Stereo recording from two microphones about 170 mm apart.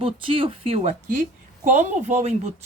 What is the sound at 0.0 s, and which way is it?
Speech, 30° right (ahead or behind).